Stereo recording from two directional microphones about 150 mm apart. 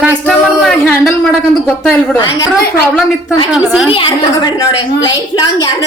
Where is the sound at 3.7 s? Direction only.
5° right (ahead or behind).